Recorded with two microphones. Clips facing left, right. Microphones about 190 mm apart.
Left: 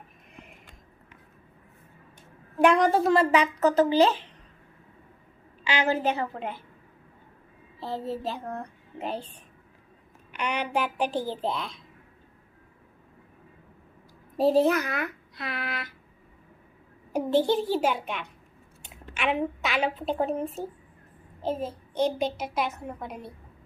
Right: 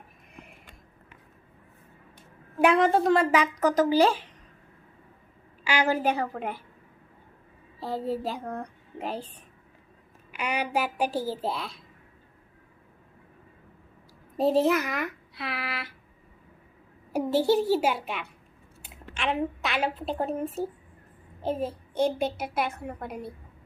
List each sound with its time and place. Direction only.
2.6 s a woman's voice: 5° right (ahead or behind)
3.6 s a child's voice: 10° right (ahead or behind)
5.6 s a child's voice: 10° right (ahead or behind)
7.9 s a child's voice: 10° right (ahead or behind)
10.3 s a child's voice: 5° right (ahead or behind)
14.3 s a woman's voice: centre (ahead or behind)
17.1 s a child's voice: 10° right (ahead or behind)
21.4 s a child's voice: 10° right (ahead or behind)
22.4 s a woman's voice: 55° right (ahead or behind)